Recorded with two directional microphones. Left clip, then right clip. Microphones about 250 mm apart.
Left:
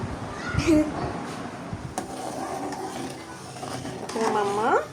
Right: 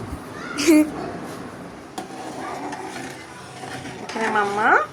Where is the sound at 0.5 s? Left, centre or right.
Right.